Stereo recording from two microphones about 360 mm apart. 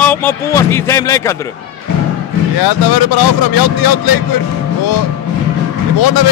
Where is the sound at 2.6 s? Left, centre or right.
Left.